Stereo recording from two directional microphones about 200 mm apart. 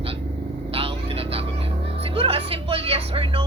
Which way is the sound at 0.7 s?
30° right (ahead or behind).